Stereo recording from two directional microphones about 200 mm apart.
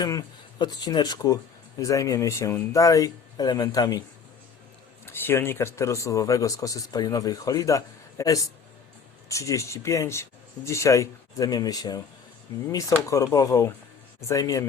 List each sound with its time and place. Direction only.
0.0 s speech: 20° left (ahead or behind)
5.0 s speech: 10° left (ahead or behind)